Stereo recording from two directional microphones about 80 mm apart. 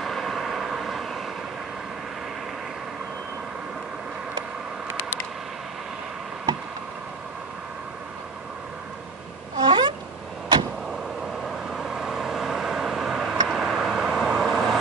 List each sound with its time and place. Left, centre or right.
0.0 s vehicle: centre
9.6 s vehicle: right
11.4 s vehicle: centre